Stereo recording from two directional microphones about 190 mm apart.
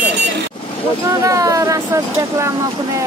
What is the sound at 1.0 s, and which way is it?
Speech, 15° right (ahead or behind).